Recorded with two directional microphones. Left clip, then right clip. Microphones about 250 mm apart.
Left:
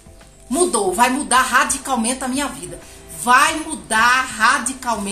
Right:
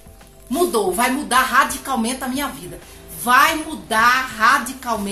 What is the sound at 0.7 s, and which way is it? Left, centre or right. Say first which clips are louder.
A woman's voice: left 4 dB; centre.